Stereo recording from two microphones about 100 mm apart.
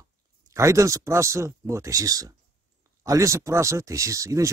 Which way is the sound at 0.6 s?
30° right (ahead or behind).